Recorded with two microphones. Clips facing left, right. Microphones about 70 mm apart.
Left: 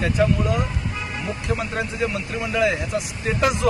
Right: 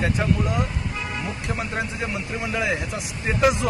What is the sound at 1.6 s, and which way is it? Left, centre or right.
Speech, right.